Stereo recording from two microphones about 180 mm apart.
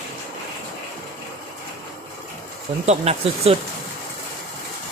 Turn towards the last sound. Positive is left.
turn(degrees=-35)  # may be behind; listen again after turning